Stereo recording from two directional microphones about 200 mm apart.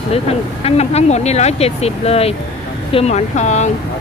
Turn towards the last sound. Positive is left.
turn(degrees=35)  # may be behind; listen again after turning